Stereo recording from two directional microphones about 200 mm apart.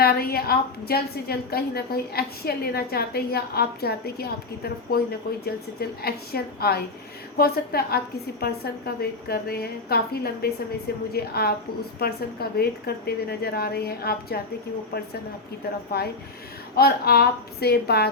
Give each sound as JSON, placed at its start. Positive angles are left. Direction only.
{"t": 0.0, "sound": "a woman's voice", "side_deg": 50}
{"t": 15.9, "sound": "a woman's voice", "side_deg": 50}